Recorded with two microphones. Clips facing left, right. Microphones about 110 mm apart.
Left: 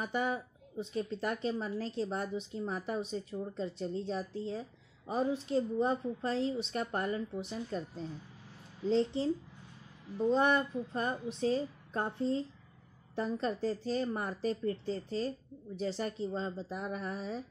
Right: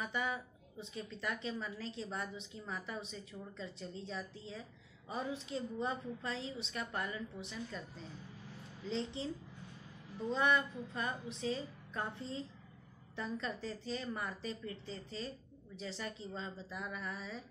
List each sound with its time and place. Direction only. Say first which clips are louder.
0.0 s a woman's voice: left 5 dB; 40° left (ahead or behind)
10.3 s a woman's voice: left 3 dB; 45° left (ahead or behind)